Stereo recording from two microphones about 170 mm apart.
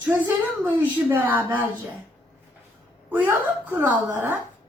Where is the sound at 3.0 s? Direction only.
10° right (ahead or behind).